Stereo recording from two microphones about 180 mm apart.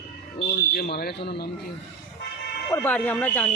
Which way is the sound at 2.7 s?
10° left (ahead or behind).